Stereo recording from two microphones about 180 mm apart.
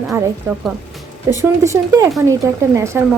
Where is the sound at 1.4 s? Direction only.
15° right (ahead or behind).